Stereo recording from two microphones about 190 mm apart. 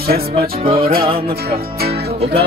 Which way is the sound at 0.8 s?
50° right (ahead or behind).